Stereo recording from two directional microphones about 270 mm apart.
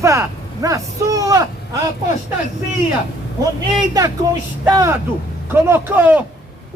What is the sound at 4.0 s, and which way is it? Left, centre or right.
A man's voice, centre.